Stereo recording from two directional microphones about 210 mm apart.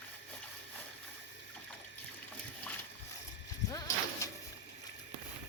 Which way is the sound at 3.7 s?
15° left (ahead or behind).